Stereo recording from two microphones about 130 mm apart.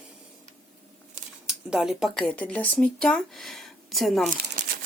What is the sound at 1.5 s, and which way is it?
Speech, 5° right (ahead or behind).